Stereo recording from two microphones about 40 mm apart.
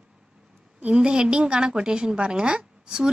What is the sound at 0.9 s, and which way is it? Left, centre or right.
A woman's voice, right.